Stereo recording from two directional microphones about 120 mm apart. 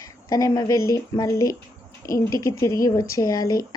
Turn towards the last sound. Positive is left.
turn(degrees=30)  # may be behind; listen again after turning